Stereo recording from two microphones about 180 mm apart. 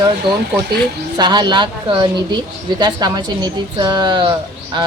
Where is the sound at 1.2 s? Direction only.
25° right (ahead or behind).